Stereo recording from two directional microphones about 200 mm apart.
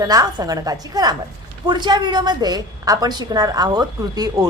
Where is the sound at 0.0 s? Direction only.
20° right (ahead or behind).